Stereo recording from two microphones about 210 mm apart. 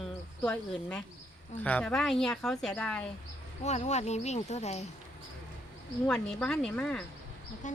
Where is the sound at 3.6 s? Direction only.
35° left (ahead or behind).